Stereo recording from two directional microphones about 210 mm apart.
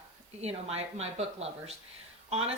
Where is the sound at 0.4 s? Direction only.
30° right (ahead or behind).